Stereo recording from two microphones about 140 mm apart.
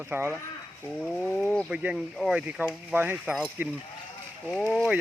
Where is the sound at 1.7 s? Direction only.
5° right (ahead or behind).